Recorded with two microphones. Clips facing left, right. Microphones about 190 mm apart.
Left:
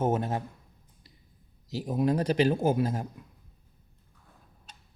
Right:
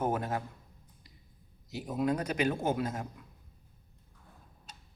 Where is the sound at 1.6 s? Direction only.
30° left (ahead or behind).